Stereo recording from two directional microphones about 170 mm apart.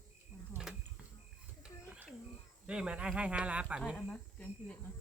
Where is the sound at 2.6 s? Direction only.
5° right (ahead or behind).